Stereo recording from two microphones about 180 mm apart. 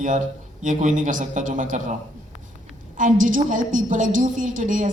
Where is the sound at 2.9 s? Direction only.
50° right (ahead or behind).